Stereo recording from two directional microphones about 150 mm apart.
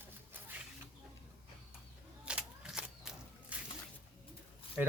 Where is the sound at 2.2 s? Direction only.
5° right (ahead or behind).